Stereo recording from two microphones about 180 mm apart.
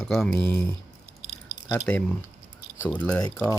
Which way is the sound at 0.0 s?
5° left (ahead or behind).